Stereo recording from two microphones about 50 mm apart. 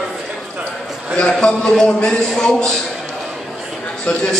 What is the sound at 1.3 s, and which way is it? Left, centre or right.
A man's voice, centre.